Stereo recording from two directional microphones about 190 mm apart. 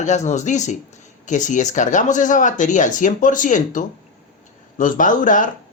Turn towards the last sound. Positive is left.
turn(degrees=45)  # may be behind; listen again after turning